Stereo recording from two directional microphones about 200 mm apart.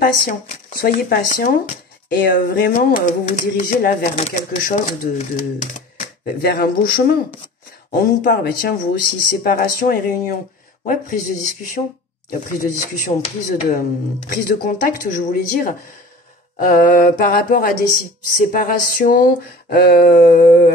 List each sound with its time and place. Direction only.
0.0 s speech: 45° left (ahead or behind)
12.3 s speech: 40° left (ahead or behind)